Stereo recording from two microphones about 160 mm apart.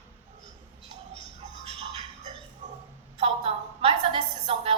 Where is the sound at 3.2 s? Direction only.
35° right (ahead or behind).